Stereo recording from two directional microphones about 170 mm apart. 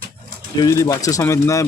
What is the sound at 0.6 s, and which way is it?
Speech, 20° left (ahead or behind).